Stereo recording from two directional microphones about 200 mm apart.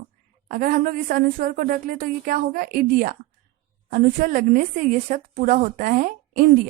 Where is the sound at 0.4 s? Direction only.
45° right (ahead or behind).